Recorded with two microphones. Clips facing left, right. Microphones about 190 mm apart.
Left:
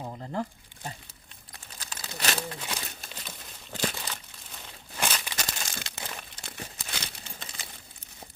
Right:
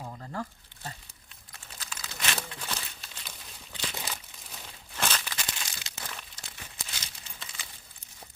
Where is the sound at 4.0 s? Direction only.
5° right (ahead or behind).